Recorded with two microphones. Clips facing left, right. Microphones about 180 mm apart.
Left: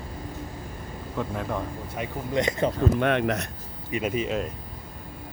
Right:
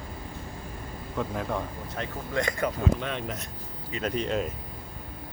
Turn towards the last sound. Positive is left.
turn(degrees=5)  # may be behind; listen again after turning